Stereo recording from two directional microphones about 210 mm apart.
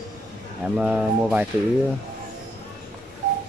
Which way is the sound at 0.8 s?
5° right (ahead or behind).